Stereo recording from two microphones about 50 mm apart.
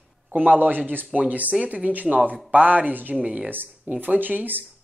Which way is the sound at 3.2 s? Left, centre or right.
Right.